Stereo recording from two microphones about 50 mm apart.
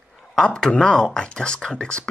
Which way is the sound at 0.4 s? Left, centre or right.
Centre.